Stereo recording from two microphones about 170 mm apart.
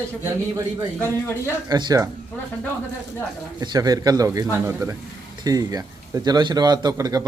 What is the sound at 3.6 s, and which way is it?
A man's voice, 25° right (ahead or behind).